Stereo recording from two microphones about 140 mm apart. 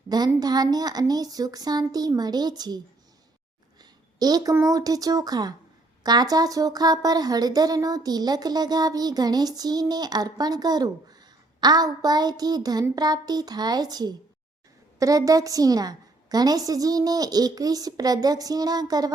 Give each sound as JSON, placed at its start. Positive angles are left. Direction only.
{"t": 0.1, "sound": "speech", "side_deg": -30}